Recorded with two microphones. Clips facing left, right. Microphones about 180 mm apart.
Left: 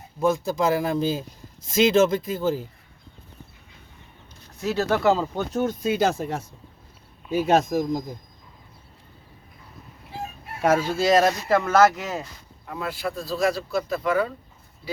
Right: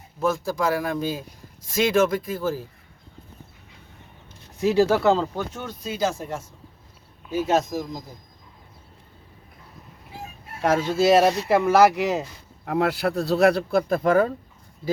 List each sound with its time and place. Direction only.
0.2 s speech: 20° left (ahead or behind)
4.6 s speech: 15° right (ahead or behind)
5.5 s speech: 50° left (ahead or behind); by 6.4 s 65° left (ahead or behind)
7.4 s speech: 55° left (ahead or behind)
10.6 s speech: 10° left (ahead or behind)
10.9 s speech: 5° right (ahead or behind)
12.6 s speech: 70° right (ahead or behind); by 14.3 s 45° right (ahead or behind)